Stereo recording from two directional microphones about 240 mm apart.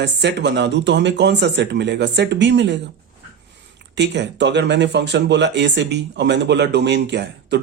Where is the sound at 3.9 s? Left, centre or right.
Right.